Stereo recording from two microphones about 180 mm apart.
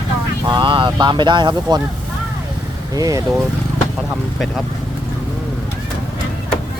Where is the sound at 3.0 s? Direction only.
20° right (ahead or behind).